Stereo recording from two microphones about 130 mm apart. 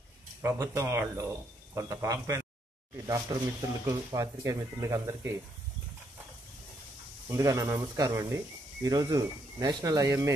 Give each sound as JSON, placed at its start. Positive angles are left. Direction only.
{"t": 0.4, "sound": "speech", "side_deg": -20}
{"t": 7.2, "sound": "speech", "side_deg": -25}